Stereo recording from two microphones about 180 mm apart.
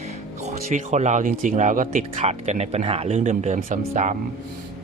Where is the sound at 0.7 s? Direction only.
40° right (ahead or behind).